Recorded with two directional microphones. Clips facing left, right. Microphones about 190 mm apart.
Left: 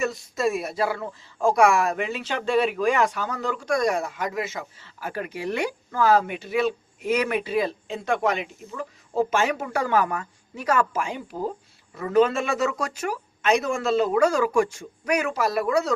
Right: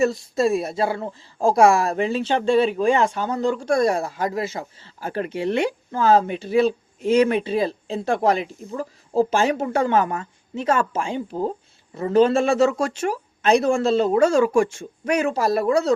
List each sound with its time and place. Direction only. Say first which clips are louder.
0.0 s speech: right 5 dB; 30° right (ahead or behind)